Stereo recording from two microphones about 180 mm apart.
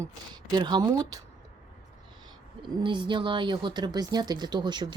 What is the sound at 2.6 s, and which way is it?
Speech, 25° right (ahead or behind).